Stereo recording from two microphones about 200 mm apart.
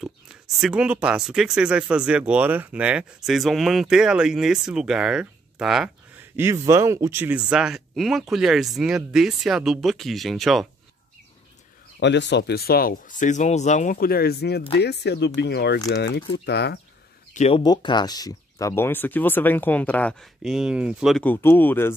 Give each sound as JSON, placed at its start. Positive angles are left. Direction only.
{"t": 0.6, "sound": "speech", "side_deg": -5}
{"t": 6.3, "sound": "speech", "side_deg": -15}
{"t": 12.0, "sound": "speech", "side_deg": 60}
{"t": 17.3, "sound": "speech", "side_deg": 30}